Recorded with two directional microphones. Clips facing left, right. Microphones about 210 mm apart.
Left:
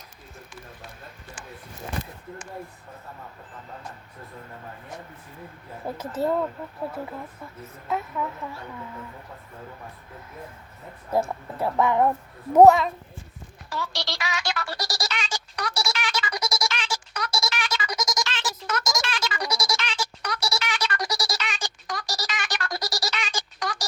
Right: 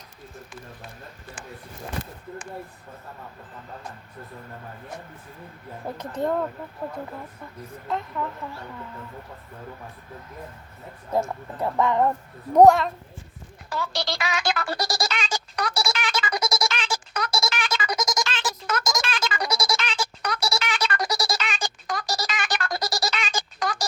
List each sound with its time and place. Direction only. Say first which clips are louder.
6.0 s a child's voice: left 1 dB; 5° left (ahead or behind)
7.9 s speech: left 1 dB; 5° left (ahead or behind)
11.6 s a child's voice: even; 10° left (ahead or behind)
13.8 s a sound: right 6 dB; 55° right (ahead or behind)